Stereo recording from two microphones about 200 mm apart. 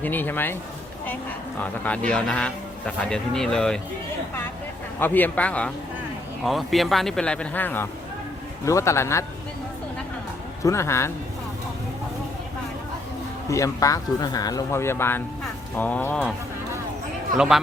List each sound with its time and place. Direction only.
0.0 s speech: 10° left (ahead or behind)
1.6 s a man's voice: 5° left (ahead or behind)
4.9 s a man's voice: 10° left (ahead or behind)
10.6 s speech: 15° left (ahead or behind)
13.5 s speech: 15° left (ahead or behind)
17.3 s a man's voice: centre (ahead or behind)